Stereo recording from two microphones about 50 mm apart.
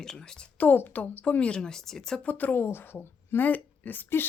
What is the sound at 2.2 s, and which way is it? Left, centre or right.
Speech, left.